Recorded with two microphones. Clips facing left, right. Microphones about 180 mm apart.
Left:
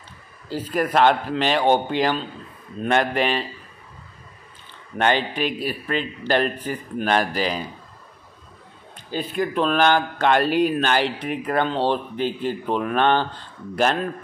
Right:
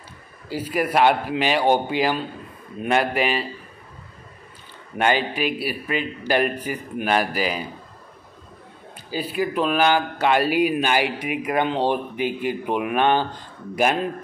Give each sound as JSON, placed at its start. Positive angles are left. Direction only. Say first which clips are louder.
{"t": 0.5, "sound": "speech", "louder": "even", "side_deg": -10}
{"t": 4.9, "sound": "speech", "louder": "even", "side_deg": -10}
{"t": 9.1, "sound": "speech", "louder": "even", "side_deg": -10}